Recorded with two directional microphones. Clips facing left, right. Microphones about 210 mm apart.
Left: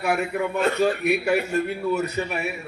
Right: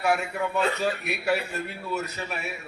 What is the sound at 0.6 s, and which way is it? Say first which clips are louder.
A man's voice: left 8 dB; 55° left (ahead or behind).